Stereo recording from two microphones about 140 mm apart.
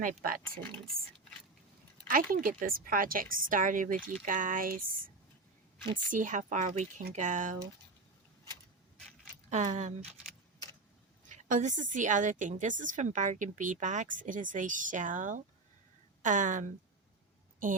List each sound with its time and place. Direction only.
0.0 s a woman's voice: 85° right
2.0 s a woman's voice: 85° right
6.1 s a woman's voice: 70° right (ahead or behind)
9.5 s a woman's voice: 55° right (ahead or behind)
11.3 s a woman's voice: 65° right (ahead or behind)